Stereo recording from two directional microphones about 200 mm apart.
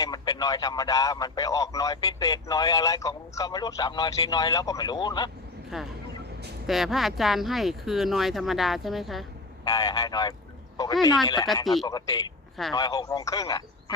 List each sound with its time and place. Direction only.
0.0 s speech: 20° left (ahead or behind)
5.7 s speech: centre (ahead or behind)
9.6 s speech: 20° left (ahead or behind)
11.6 s speech: centre (ahead or behind)
11.9 s speech: 20° left (ahead or behind)